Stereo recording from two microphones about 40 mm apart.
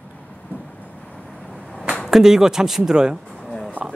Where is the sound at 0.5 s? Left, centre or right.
Right.